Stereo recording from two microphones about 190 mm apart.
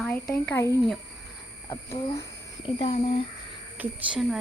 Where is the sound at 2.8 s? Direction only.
30° left (ahead or behind).